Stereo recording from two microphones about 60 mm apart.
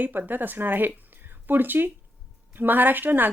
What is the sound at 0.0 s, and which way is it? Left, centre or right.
Speech, right.